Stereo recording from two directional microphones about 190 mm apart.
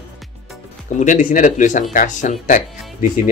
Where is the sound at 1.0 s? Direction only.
45° left (ahead or behind).